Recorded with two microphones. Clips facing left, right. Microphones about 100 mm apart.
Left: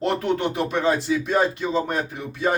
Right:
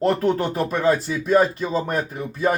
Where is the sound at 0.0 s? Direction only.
40° right (ahead or behind).